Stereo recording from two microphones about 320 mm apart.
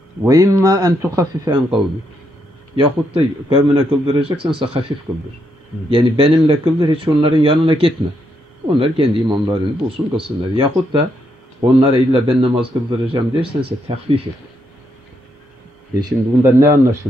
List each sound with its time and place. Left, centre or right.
0.2 s a man's voice: centre
16.0 s a man's voice: centre